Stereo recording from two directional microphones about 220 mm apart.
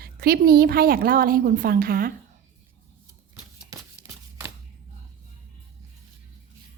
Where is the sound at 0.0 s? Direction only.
45° right (ahead or behind).